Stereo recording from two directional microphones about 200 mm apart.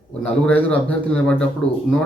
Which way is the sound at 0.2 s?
5° left (ahead or behind).